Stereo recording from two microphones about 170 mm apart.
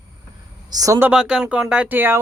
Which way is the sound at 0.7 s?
20° right (ahead or behind).